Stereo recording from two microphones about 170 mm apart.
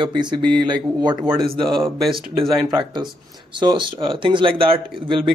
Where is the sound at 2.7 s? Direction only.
25° right (ahead or behind).